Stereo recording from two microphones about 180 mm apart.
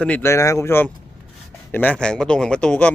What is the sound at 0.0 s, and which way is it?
Speech, 10° left (ahead or behind).